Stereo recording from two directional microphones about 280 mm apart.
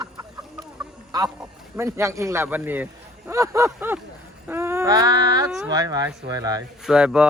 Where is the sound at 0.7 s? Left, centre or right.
Centre.